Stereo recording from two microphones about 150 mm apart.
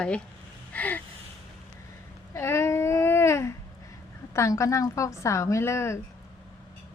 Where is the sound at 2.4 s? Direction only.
20° left (ahead or behind).